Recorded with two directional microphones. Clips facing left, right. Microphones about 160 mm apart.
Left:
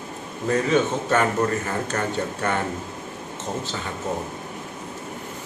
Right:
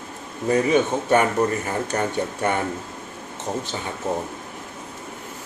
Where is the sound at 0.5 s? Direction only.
15° right (ahead or behind).